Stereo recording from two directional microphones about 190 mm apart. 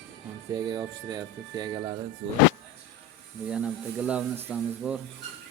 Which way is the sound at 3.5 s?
5° right (ahead or behind).